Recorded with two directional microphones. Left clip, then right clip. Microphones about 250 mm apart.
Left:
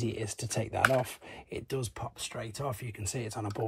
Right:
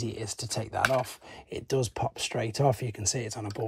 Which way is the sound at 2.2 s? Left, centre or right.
Right.